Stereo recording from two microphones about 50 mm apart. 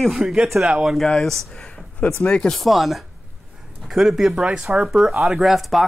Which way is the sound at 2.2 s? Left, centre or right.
Left.